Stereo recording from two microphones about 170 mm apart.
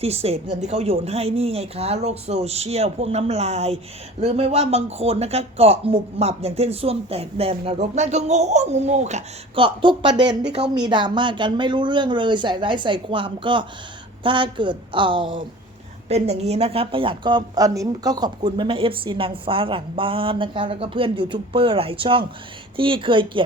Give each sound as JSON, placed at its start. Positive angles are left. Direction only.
{"t": 0.0, "sound": "speech", "side_deg": -35}